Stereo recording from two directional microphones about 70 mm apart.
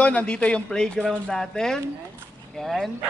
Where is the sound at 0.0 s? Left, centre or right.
Centre.